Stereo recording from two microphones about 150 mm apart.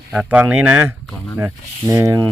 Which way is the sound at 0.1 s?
10° right (ahead or behind).